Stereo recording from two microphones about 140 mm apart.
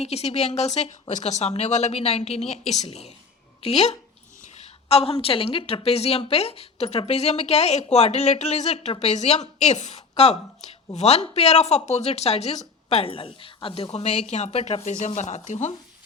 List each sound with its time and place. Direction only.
0.0 s speech: 50° left (ahead or behind)